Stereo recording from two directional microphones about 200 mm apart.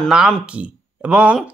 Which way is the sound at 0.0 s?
Centre (ahead or behind).